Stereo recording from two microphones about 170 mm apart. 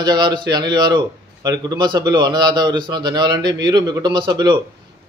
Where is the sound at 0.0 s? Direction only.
25° right (ahead or behind).